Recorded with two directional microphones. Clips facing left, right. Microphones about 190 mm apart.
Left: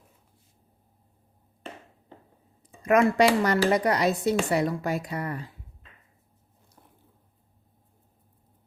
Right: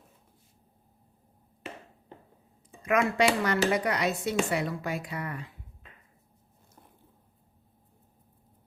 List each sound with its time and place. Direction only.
2.8 s speech: 40° left (ahead or behind)